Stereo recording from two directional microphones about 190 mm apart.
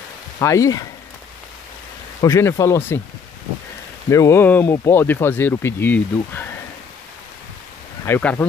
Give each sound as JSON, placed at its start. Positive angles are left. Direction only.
{"t": 0.4, "sound": "speech", "side_deg": 15}
{"t": 2.2, "sound": "speech", "side_deg": 15}
{"t": 4.1, "sound": "speech", "side_deg": 15}
{"t": 8.0, "sound": "speech", "side_deg": 10}